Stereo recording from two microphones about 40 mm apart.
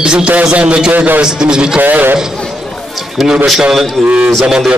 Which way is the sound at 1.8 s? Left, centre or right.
Right.